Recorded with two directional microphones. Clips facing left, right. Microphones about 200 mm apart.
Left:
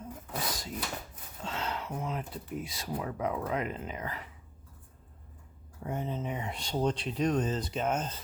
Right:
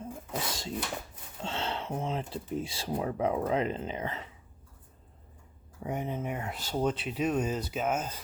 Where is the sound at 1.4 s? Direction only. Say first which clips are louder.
Right 2 dB; 30° right (ahead or behind).